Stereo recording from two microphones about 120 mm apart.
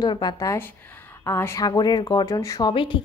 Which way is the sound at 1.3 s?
25° left (ahead or behind).